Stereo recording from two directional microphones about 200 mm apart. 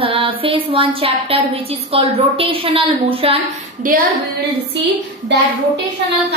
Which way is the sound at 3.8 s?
45° right (ahead or behind).